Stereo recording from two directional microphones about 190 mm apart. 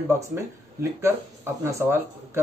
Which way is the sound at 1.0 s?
15° right (ahead or behind).